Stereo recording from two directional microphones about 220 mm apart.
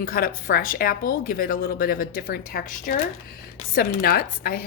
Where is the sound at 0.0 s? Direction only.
40° left (ahead or behind).